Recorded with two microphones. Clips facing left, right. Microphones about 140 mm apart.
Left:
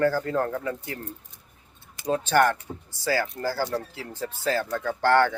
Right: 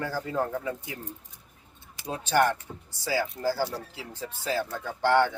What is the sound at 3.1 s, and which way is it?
Speech, 15° right (ahead or behind).